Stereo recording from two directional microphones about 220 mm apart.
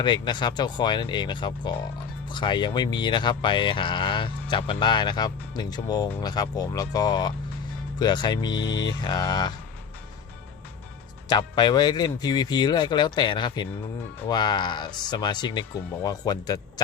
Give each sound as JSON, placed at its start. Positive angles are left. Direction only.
{"t": 0.0, "sound": "speech", "side_deg": 20}
{"t": 11.3, "sound": "speech", "side_deg": 20}